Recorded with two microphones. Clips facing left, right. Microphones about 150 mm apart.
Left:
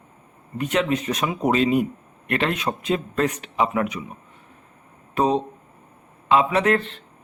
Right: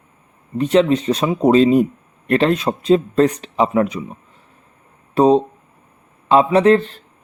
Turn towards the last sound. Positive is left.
turn(degrees=-35)  # may be behind; listen again after turning